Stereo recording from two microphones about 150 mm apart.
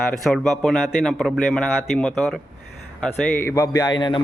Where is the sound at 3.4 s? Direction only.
15° left (ahead or behind).